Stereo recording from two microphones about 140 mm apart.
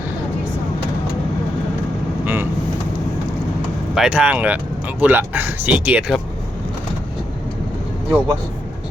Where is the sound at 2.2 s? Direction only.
15° right (ahead or behind).